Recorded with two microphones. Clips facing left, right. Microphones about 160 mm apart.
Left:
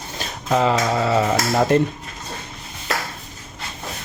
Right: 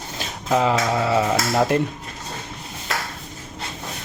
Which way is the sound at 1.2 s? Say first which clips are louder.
Left 1 dB; 5° right (ahead or behind).